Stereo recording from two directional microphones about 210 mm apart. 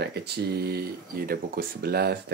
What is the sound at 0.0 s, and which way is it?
Speech, 50° right (ahead or behind).